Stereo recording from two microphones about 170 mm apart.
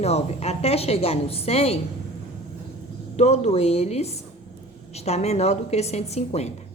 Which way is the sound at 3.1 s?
40° left (ahead or behind).